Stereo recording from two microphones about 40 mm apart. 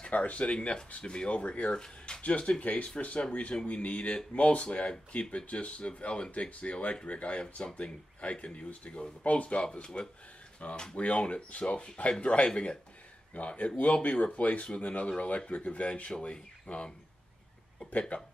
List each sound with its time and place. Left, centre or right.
0.1 s speech: left
2.2 s speech: left
10.6 s speech: left